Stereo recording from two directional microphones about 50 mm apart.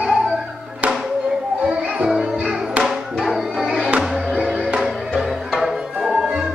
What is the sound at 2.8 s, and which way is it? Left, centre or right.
Music, centre.